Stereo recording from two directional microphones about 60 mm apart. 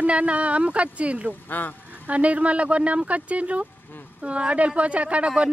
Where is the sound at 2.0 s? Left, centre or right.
Right.